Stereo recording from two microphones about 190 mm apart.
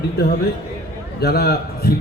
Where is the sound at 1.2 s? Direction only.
55° left (ahead or behind).